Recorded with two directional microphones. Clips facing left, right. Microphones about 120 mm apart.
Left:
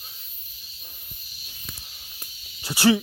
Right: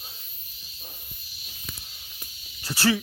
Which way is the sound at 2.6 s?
15° left (ahead or behind).